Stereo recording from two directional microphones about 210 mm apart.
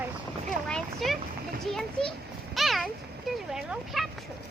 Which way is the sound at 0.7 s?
Centre (ahead or behind).